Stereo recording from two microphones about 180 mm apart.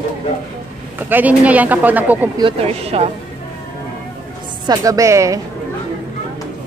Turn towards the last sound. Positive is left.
turn(degrees=-15)  # may be behind; listen again after turning